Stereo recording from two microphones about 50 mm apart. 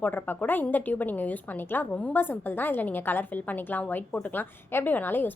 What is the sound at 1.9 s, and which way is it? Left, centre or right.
Speech, left.